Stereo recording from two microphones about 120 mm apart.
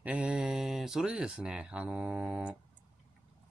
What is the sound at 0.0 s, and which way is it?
Speech, 10° right (ahead or behind).